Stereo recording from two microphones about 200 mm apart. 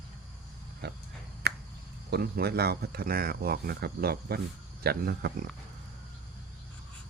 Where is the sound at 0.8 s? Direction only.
55° right (ahead or behind).